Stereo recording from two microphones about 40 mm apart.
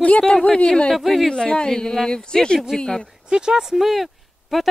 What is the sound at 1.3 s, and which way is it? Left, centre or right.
Speech, left.